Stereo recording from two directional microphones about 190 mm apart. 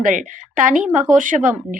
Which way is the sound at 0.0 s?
40° right (ahead or behind).